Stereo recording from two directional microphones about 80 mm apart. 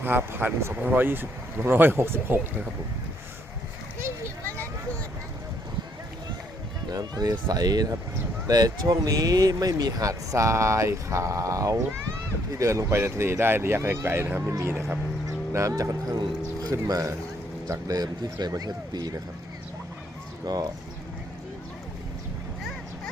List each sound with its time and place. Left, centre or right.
0.0 s speech: right
4.4 s a sound: left
6.8 s speech: right
13.0 s speech: right
20.4 s speech: right